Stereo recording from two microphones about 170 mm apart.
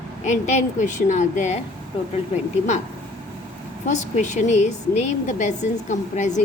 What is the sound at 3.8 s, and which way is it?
A woman's voice, 45° left (ahead or behind).